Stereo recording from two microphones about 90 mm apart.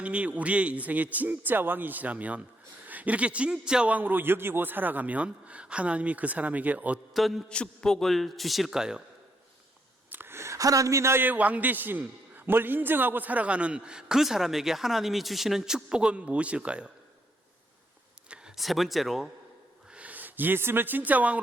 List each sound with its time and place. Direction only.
0.0 s a man's voice: 15° right (ahead or behind)
7.1 s a man's voice: centre (ahead or behind)
10.1 s a man's voice: 25° right (ahead or behind)
18.3 s speech: 5° right (ahead or behind)
19.9 s speech: 15° right (ahead or behind)